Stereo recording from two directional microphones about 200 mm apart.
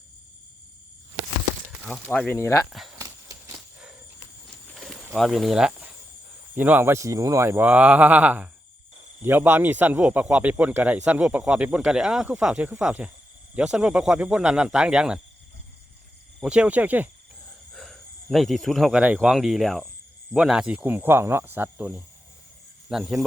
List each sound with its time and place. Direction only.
2.0 s speech: 10° left (ahead or behind)
3.0 s horse: 15° right (ahead or behind)
3.5 s a sound: 5° right (ahead or behind)
6.6 s a man's voice: 10° right (ahead or behind)
16.4 s a man's voice: 5° right (ahead or behind)